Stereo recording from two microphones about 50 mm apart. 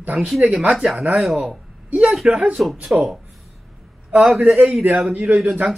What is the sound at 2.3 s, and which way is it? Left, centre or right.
Speech, right.